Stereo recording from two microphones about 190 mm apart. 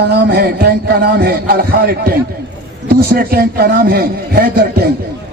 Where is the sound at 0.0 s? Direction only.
60° right (ahead or behind).